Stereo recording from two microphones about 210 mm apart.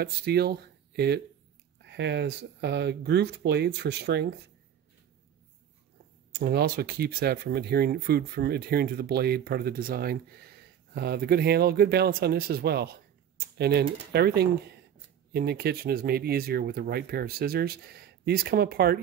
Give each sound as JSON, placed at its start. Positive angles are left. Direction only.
{"t": 0.0, "sound": "speech", "side_deg": -50}
{"t": 6.3, "sound": "speech", "side_deg": -50}